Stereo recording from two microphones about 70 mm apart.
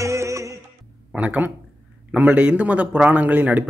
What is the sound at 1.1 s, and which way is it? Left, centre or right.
Speech, right.